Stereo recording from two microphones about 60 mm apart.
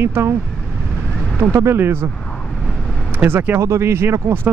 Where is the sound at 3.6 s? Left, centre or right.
Right.